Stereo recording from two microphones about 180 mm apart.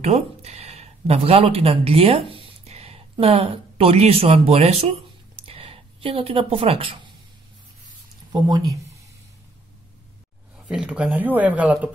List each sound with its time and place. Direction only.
0.0 s speech: 35° right (ahead or behind)
5.4 s a sound: 30° right (ahead or behind)
8.3 s speech: 20° right (ahead or behind)
10.7 s speech: 5° right (ahead or behind)